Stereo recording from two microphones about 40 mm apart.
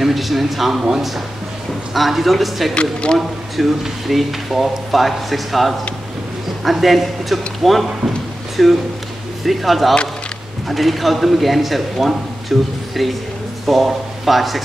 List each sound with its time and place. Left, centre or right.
0.0 s speech: centre
2.7 s speech: left
3.2 s speech: centre